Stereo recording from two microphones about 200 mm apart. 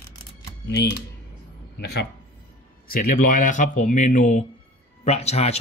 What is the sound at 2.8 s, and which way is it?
Speech, 45° left (ahead or behind).